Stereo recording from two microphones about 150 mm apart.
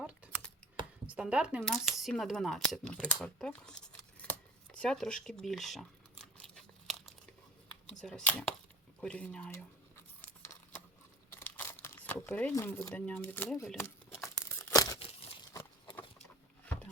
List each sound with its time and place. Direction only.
0.0 s computer keyboard: 10° right (ahead or behind)
1.0 s speech: 10° right (ahead or behind)
4.2 s a sound: 5° left (ahead or behind)
6.3 s crumpling: 5° left (ahead or behind)
8.0 s speech: 5° left (ahead or behind)
11.3 s crumpling: 15° left (ahead or behind)
12.5 s speech: 15° left (ahead or behind)
14.6 s tearing: 25° left (ahead or behind)